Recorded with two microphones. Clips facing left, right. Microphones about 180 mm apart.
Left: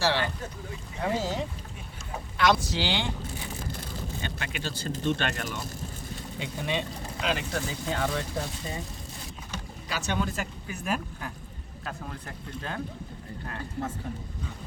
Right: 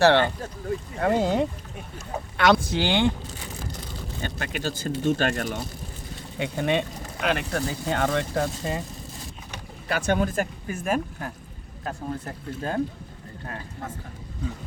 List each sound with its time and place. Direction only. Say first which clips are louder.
0.0 s speech: right 9 dB; 60° right (ahead or behind)
4.2 s speech: right 7 dB; 45° right (ahead or behind)
6.4 s speech: right 7 dB; 60° right (ahead or behind)
9.9 s speech: right 7 dB; 50° right (ahead or behind)